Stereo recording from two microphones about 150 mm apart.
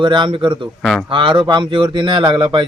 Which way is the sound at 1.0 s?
35° right (ahead or behind).